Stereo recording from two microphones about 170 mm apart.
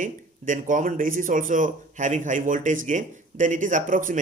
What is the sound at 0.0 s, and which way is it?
Speech, 50° right (ahead or behind).